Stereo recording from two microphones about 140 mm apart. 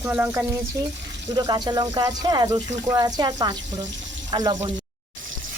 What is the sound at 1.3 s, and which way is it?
Speech, 30° right (ahead or behind).